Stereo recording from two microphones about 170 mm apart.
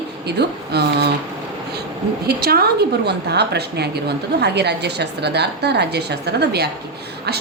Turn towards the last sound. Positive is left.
turn(degrees=-75)  # may be behind; listen again after turning